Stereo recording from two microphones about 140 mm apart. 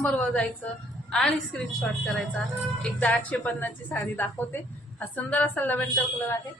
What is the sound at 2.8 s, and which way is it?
A woman's voice, 10° left (ahead or behind).